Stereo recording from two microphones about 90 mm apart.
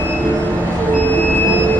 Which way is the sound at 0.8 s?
20° left (ahead or behind).